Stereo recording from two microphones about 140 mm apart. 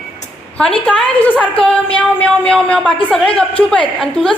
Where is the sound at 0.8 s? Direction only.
5° left (ahead or behind).